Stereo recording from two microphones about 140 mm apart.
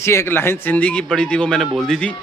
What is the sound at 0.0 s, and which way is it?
A man's voice, 20° left (ahead or behind).